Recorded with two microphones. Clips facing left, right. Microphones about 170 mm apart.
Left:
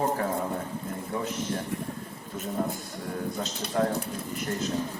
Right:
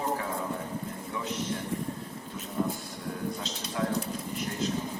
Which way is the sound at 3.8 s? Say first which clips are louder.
Left 5 dB; 50° left (ahead or behind).